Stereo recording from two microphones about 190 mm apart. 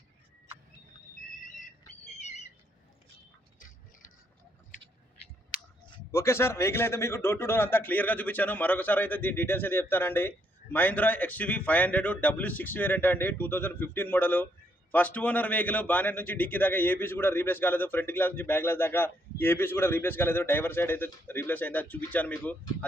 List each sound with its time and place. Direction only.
6.1 s a man's voice: 15° left (ahead or behind)